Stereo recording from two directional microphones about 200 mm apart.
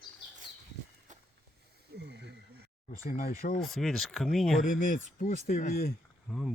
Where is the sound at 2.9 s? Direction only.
45° left (ahead or behind).